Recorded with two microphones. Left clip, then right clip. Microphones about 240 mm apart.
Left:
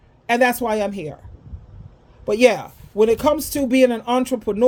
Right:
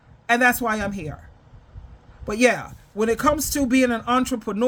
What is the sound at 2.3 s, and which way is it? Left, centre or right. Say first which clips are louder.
Speech: left 4 dB; right.